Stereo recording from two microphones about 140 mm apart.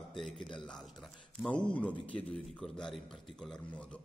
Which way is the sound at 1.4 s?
10° left (ahead or behind).